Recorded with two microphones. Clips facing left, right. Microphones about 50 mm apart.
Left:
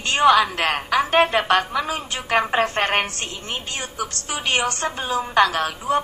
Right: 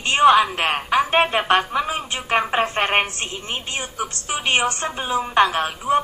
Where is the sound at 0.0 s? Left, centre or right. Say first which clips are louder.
Right 2 dB; right.